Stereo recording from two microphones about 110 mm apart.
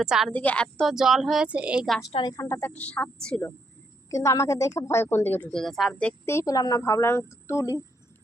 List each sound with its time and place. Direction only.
0.0 s speech: 5° right (ahead or behind)
0.3 s speech: 10° left (ahead or behind)
0.9 s speech: centre (ahead or behind)
1.5 s a woman's voice: 10° right (ahead or behind)
2.3 s speech: 25° left (ahead or behind)
4.1 s speech: 25° left (ahead or behind)
5.5 s speech: 5° left (ahead or behind)
6.2 s speech: 30° left (ahead or behind)